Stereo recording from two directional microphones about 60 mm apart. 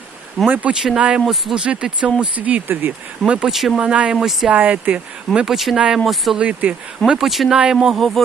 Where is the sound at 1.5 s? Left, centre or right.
Centre.